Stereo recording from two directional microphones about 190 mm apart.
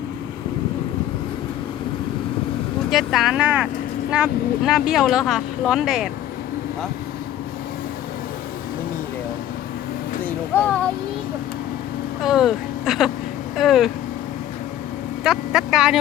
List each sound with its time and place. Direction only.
2.9 s speech: centre (ahead or behind)
10.2 s vehicle: 10° left (ahead or behind)
12.2 s speech: centre (ahead or behind)
15.2 s speech: 5° right (ahead or behind)